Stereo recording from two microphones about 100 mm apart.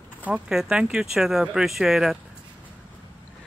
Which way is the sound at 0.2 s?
10° right (ahead or behind).